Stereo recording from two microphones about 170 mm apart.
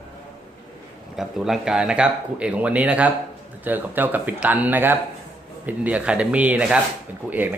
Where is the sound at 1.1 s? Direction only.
5° right (ahead or behind).